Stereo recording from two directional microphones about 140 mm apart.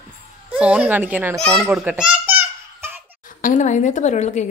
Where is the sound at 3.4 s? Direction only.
60° left (ahead or behind).